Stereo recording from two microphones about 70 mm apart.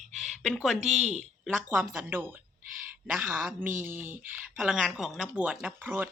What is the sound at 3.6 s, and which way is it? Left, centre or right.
Speech, right.